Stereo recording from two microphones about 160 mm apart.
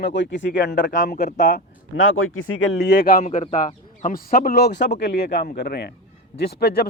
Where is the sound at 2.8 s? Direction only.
90° left.